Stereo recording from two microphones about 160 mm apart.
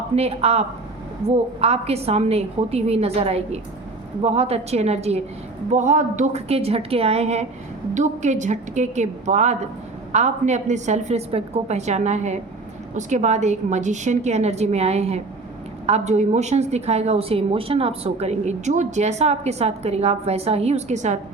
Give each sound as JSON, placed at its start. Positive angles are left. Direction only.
{"t": 0.2, "sound": "a woman's voice", "side_deg": -40}